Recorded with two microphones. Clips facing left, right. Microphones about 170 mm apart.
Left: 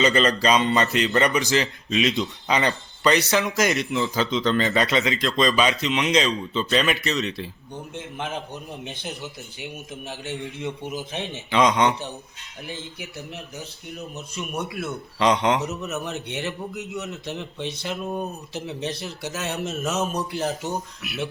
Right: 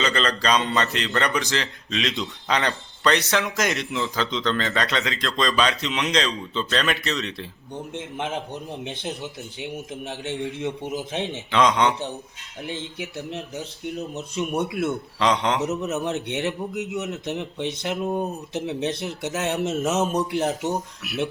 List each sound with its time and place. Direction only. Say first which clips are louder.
0.0 s a man's voice: left 4 dB; 10° left (ahead or behind)
7.7 s a man's voice: right 2 dB; 20° right (ahead or behind)
9.7 s a man's voice: right 3 dB; 25° right (ahead or behind)
11.5 s a man's voice: even; centre (ahead or behind)
13.0 s a man's voice: right 5 dB; 25° right (ahead or behind)
15.2 s a man's voice: left 2 dB; centre (ahead or behind)
15.7 s a man's voice: right 4 dB; 20° right (ahead or behind)